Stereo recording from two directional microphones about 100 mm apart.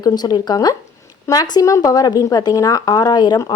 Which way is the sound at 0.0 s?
40° left (ahead or behind).